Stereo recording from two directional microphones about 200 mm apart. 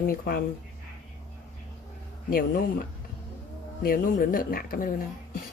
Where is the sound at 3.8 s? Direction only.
45° left (ahead or behind).